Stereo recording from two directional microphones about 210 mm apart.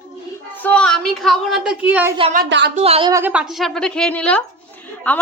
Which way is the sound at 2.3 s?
50° right (ahead or behind).